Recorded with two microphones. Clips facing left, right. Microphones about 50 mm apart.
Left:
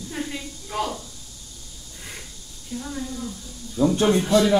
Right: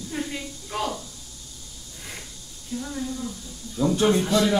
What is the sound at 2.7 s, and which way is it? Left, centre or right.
Speech, centre.